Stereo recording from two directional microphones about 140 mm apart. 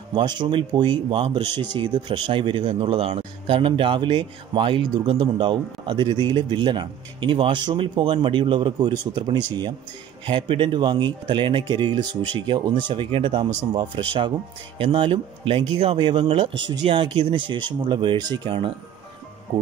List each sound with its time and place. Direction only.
0.1 s speech: 30° right (ahead or behind)